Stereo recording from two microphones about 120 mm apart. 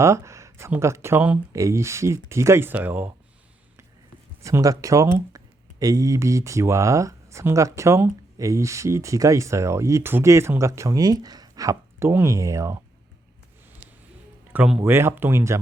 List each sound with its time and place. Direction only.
0.0 s speech: 25° right (ahead or behind)
4.4 s speech: 25° right (ahead or behind)
14.5 s speech: 15° right (ahead or behind)